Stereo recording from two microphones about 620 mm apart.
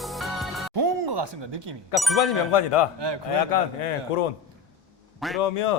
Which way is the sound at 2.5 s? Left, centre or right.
Left.